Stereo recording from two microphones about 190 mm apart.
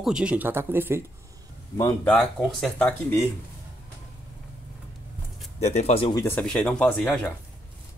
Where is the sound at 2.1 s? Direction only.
5° left (ahead or behind).